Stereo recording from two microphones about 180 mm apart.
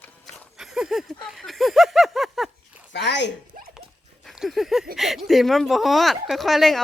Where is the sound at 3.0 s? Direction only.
75° left (ahead or behind).